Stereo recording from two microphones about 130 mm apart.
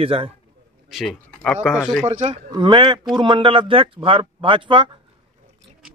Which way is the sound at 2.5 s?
35° right (ahead or behind).